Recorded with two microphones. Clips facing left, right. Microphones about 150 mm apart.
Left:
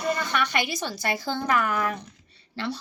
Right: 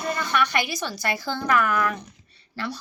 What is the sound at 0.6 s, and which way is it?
Speech, 20° left (ahead or behind).